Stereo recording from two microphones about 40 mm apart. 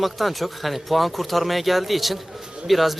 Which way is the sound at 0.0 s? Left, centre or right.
Centre.